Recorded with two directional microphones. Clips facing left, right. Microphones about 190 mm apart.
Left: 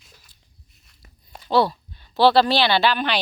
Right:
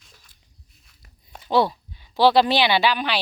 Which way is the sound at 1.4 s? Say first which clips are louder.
Left 1 dB; 15° right (ahead or behind).